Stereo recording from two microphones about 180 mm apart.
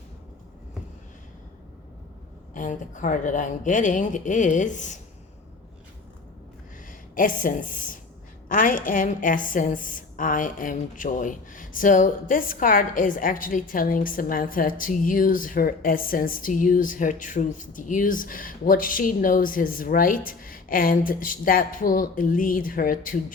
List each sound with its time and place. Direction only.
2.6 s a woman's voice: 45° left (ahead or behind)
7.2 s a woman's voice: 50° left (ahead or behind)